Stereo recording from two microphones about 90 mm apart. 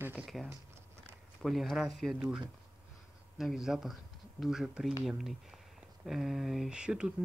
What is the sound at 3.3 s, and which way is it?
Speech, 5° right (ahead or behind).